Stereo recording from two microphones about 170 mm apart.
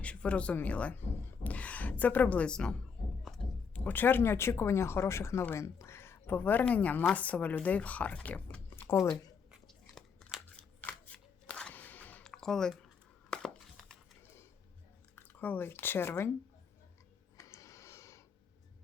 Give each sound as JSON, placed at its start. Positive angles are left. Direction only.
{"t": 0.0, "sound": "speech", "side_deg": 5}
{"t": 3.8, "sound": "speech", "side_deg": 10}
{"t": 9.5, "sound": "scissors", "side_deg": 5}
{"t": 13.3, "sound": "a sound", "side_deg": 0}
{"t": 15.1, "sound": "speech", "side_deg": 10}
{"t": 17.3, "sound": "a sound", "side_deg": 20}